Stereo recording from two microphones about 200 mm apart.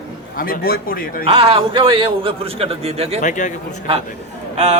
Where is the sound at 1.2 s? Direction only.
30° right (ahead or behind).